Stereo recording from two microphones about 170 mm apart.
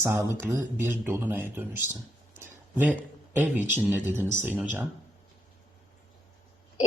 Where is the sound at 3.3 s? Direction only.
10° right (ahead or behind).